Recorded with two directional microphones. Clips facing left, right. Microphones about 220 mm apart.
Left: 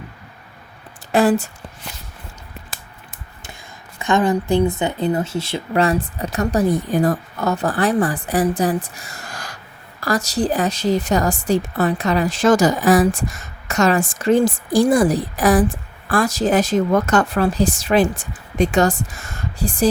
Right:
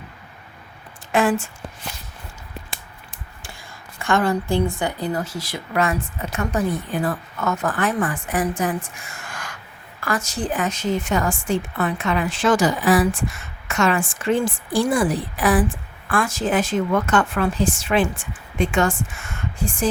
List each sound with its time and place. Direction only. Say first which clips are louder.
1.1 s a woman's voice: left 4 dB; 35° left (ahead or behind)
3.9 s a woman's voice: left 3 dB; 20° left (ahead or behind); by 19.9 s 35° left (ahead or behind)